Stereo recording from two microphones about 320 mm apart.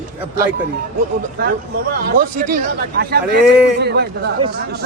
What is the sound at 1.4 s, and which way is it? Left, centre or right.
A man's voice, right.